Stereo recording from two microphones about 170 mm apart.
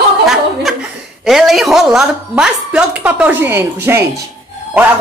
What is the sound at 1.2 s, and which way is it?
A woman's voice, centre (ahead or behind).